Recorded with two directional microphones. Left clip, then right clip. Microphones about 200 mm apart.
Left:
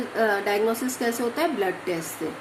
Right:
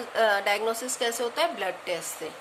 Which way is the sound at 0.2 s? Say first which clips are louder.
Left 1 dB; 35° right (ahead or behind).